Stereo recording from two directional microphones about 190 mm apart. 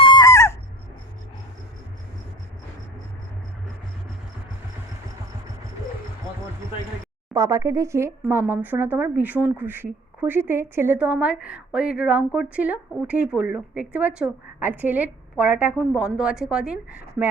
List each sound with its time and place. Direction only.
0.0 s owl: 20° left (ahead or behind)
7.3 s speech: 15° right (ahead or behind)